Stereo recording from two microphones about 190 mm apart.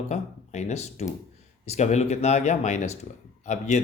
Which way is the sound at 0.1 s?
35° left (ahead or behind).